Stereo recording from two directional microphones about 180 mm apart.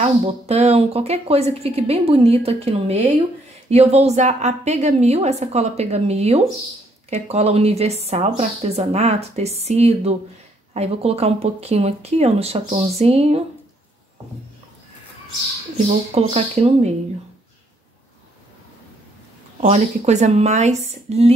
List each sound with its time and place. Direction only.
0.0 s a woman's voice: 35° right (ahead or behind)
15.9 s a woman's voice: 35° right (ahead or behind)
19.6 s a woman's voice: 40° right (ahead or behind)